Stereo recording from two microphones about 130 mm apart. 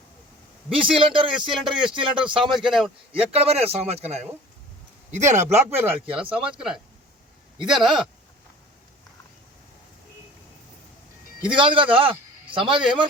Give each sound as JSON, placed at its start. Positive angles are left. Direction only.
{"t": 0.7, "sound": "a man's voice", "side_deg": -40}
{"t": 1.5, "sound": "a man's voice", "side_deg": -5}
{"t": 1.9, "sound": "a man's voice", "side_deg": -40}
{"t": 2.4, "sound": "a man's voice", "side_deg": 0}
{"t": 3.3, "sound": "speech", "side_deg": -50}
{"t": 5.7, "sound": "a man's voice", "side_deg": -15}
{"t": 11.4, "sound": "a man's voice", "side_deg": -40}